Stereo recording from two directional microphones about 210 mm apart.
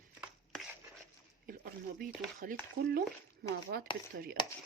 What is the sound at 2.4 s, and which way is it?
Speech, 40° right (ahead or behind).